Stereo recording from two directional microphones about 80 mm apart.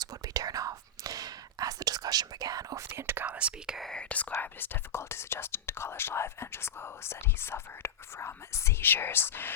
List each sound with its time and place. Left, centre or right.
0.0 s whispering: right
3.2 s whispering: centre
3.8 s whispering: centre
4.1 s speech: left